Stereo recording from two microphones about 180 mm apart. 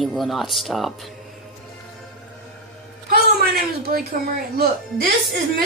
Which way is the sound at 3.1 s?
55° right (ahead or behind).